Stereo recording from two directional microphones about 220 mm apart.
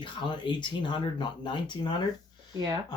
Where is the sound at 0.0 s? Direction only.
20° left (ahead or behind).